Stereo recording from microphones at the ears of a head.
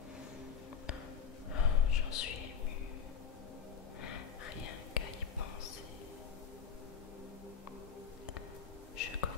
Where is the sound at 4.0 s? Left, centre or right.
Left.